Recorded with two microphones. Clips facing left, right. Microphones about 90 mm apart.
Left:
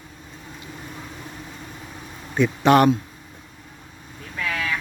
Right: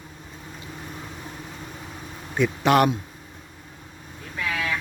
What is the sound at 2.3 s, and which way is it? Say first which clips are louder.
Speech: left 3 dB; centre (ahead or behind).